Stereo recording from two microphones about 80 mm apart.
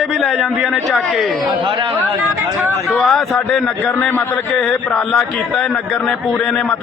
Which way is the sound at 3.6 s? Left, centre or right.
Centre.